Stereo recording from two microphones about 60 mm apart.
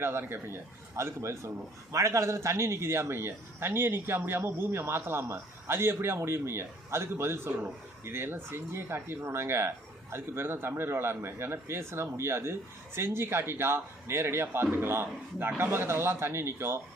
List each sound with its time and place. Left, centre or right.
0.0 s a man's voice: right